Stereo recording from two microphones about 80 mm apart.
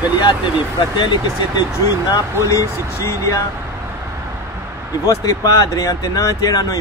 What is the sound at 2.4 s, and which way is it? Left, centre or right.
Speech, left.